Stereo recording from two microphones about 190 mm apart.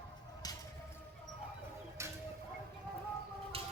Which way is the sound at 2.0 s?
15° right (ahead or behind).